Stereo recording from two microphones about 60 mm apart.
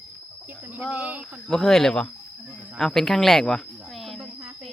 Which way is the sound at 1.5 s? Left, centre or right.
Centre.